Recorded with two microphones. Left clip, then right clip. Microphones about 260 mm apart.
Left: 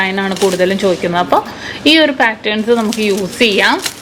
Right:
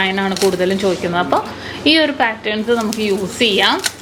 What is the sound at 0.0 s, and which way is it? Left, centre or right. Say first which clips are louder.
A woman's voice: left 2 dB; centre.